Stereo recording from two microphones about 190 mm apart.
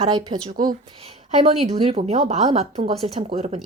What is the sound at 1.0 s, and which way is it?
A woman's voice, 30° right (ahead or behind).